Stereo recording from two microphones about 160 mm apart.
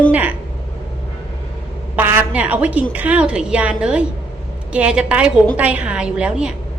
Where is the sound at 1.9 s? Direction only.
10° right (ahead or behind).